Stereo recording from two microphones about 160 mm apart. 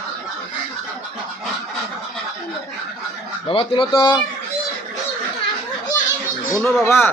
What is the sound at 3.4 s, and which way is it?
Speech, 35° left (ahead or behind).